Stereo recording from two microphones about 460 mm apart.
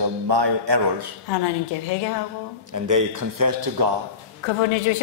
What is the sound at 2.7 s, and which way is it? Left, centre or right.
A man's voice, right.